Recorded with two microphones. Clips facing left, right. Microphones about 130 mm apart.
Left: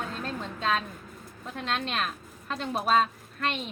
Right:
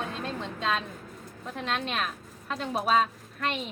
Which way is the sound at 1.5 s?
Centre (ahead or behind).